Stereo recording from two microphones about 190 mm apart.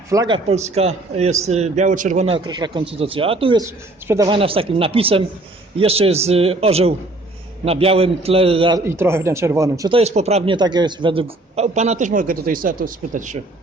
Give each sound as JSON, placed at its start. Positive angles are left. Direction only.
{"t": 0.1, "sound": "speech", "side_deg": -20}
{"t": 4.0, "sound": "speech", "side_deg": -15}
{"t": 4.3, "sound": "speech", "side_deg": -30}
{"t": 9.0, "sound": "speech", "side_deg": -15}
{"t": 9.9, "sound": "speech", "side_deg": -35}